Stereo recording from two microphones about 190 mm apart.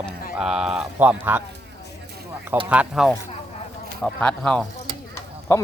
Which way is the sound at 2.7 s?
5° right (ahead or behind).